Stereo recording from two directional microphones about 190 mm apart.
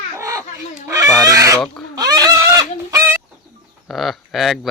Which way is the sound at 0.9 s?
15° right (ahead or behind).